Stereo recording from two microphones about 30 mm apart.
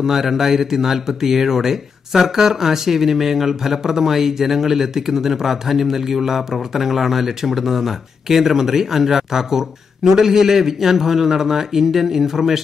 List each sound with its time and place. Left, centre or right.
0.0 s speech: centre